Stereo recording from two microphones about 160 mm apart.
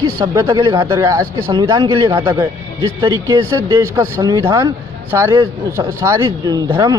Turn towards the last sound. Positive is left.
turn(degrees=-25)  # may be behind; listen again after turning